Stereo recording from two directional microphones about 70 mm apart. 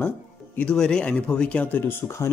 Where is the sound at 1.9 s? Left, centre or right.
Left.